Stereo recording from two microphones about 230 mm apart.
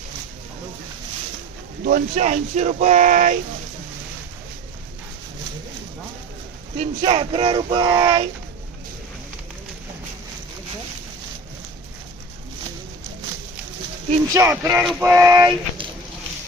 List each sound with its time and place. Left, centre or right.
1.8 s speech: right
6.7 s speech: right
14.3 s speech: centre